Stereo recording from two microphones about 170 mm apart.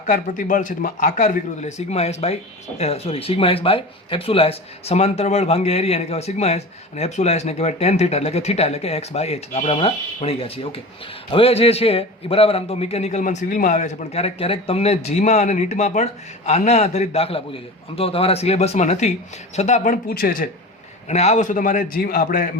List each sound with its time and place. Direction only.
0.1 s a man's voice: 50° left (ahead or behind)
21.1 s a man's voice: 40° left (ahead or behind)